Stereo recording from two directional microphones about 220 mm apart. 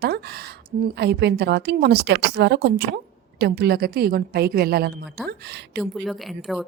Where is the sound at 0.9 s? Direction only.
50° right (ahead or behind).